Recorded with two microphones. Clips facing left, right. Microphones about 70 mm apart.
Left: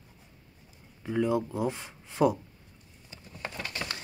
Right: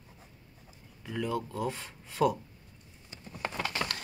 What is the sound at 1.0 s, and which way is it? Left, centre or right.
Speech, left.